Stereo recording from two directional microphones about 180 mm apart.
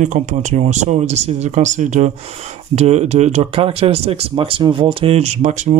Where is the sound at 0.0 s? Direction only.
45° right (ahead or behind).